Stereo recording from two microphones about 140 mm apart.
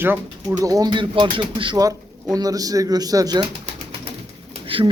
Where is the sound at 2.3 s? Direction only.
25° right (ahead or behind).